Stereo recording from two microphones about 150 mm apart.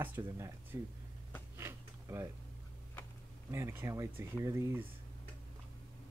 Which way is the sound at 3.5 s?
20° right (ahead or behind).